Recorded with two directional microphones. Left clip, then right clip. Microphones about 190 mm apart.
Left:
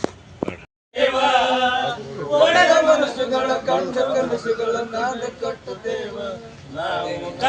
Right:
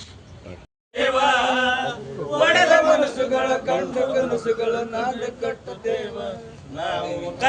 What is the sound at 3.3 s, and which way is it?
Speech, centre (ahead or behind).